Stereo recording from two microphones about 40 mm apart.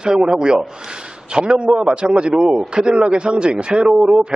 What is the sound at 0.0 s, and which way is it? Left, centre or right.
Speech, centre.